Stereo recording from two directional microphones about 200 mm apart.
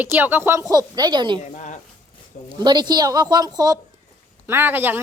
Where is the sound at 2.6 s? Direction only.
20° right (ahead or behind).